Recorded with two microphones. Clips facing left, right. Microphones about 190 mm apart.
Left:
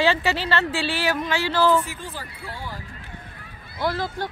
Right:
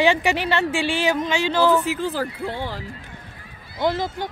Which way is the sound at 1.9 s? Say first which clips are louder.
Right 12 dB; 85° right.